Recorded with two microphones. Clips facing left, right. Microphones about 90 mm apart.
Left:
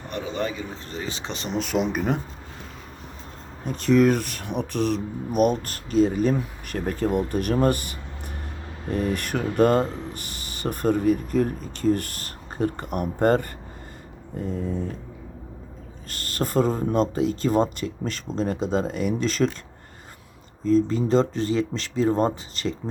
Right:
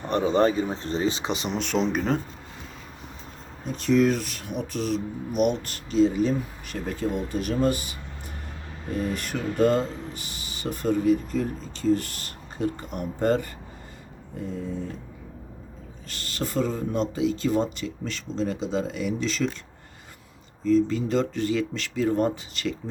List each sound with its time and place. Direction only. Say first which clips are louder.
0.1 s speech: right 8 dB; 35° right (ahead or behind)
1.2 s speech: right 1 dB; 5° right (ahead or behind); by 2.1 s 10° left (ahead or behind)
3.7 s speech: left 3 dB; 55° left (ahead or behind)
16.0 s speech: left 3 dB; 50° left (ahead or behind)
20.7 s speech: left 2 dB; 40° left (ahead or behind)